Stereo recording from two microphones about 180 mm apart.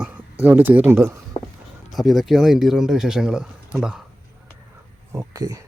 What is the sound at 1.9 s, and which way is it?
Speech, centre (ahead or behind).